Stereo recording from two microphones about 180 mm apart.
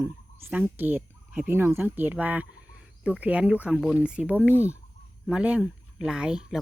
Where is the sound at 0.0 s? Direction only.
10° right (ahead or behind).